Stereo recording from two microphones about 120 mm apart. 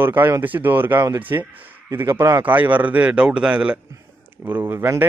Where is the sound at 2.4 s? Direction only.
15° right (ahead or behind).